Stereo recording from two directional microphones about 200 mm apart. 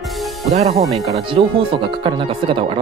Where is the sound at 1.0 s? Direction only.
20° right (ahead or behind).